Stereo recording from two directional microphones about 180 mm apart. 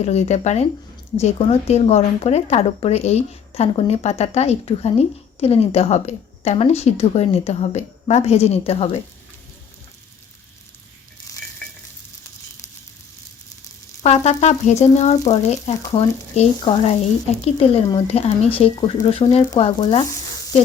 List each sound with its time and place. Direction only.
0.0 s a woman's voice: 35° left (ahead or behind)
14.0 s a woman's voice: 35° left (ahead or behind)